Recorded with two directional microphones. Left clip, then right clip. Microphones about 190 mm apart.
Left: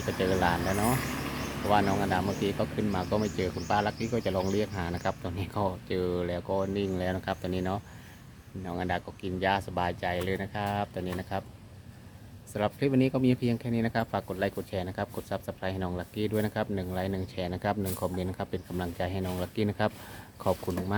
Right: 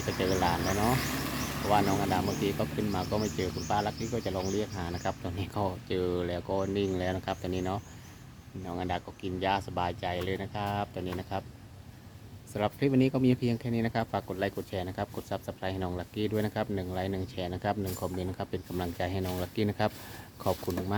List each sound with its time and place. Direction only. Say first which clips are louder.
0.2 s speech: left 2 dB; 10° left (ahead or behind)
0.9 s a sound: right 1 dB; 50° right (ahead or behind)
1.6 s speech: left 1 dB; 15° left (ahead or behind)
12.5 s speech: left 1 dB; 10° left (ahead or behind)